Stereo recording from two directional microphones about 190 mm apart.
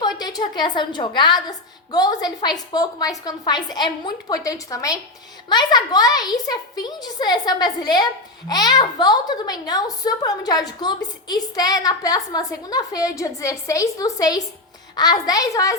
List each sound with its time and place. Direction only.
0.2 s a woman's voice: 20° left (ahead or behind)